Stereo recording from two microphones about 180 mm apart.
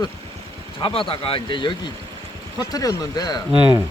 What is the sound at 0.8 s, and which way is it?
Speech, 30° left (ahead or behind).